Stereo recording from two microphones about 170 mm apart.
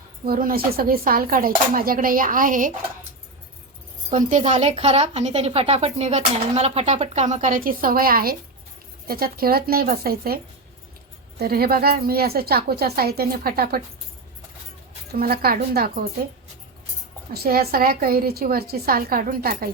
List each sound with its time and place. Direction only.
0.3 s a woman's voice: 60° right (ahead or behind)
4.1 s a woman's voice: 50° right (ahead or behind)
15.1 s a woman's voice: 65° right (ahead or behind)
17.3 s a woman's voice: 65° right (ahead or behind)